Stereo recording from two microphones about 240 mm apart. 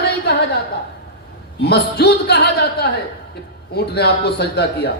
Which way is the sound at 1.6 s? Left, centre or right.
Left.